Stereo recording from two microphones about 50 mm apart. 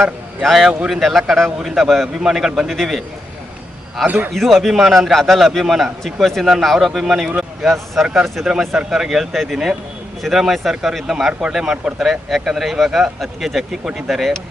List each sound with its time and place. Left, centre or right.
0.4 s a man's voice: centre
4.0 s a man's voice: right
4.4 s a man's voice: centre